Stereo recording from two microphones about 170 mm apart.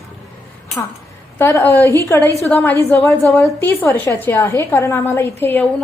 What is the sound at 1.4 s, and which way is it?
A woman's voice, 15° left (ahead or behind).